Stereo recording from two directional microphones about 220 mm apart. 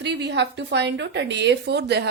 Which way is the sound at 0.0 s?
50° right (ahead or behind).